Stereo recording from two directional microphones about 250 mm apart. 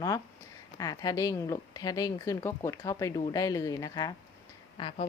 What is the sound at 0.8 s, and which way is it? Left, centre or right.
Speech, centre.